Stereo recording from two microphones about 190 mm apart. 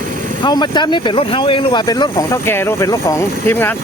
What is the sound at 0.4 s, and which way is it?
Speech, 20° left (ahead or behind).